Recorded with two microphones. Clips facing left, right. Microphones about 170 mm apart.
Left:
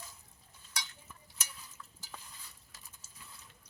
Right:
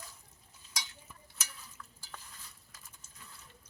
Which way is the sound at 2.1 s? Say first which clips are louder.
Even; 10° left (ahead or behind).